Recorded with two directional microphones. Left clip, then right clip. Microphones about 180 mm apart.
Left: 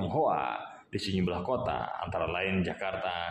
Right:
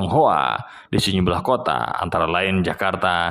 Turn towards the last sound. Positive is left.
turn(degrees=-40)  # may be behind; listen again after turning